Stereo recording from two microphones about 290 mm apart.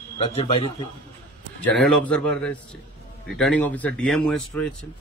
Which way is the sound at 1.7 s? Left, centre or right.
Centre.